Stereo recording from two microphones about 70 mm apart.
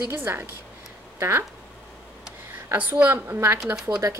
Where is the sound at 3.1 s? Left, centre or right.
Right.